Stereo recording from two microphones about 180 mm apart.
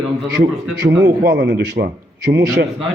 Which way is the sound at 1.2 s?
65° right (ahead or behind).